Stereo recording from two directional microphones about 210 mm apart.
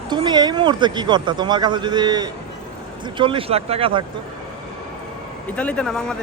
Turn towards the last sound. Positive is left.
turn(degrees=5)  # may be behind; listen again after turning